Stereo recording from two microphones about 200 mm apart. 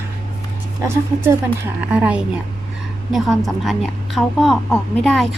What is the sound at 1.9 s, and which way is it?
A woman's voice, 5° right (ahead or behind).